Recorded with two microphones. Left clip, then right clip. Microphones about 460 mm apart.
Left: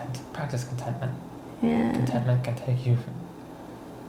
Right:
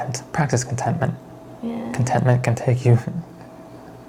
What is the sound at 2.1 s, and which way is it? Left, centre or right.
Speech, right.